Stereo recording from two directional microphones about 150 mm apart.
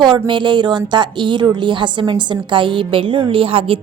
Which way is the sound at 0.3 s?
30° right (ahead or behind).